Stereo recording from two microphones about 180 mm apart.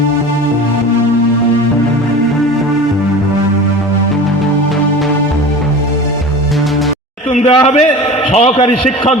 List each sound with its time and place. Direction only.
7.3 s a man's voice: 35° left (ahead or behind)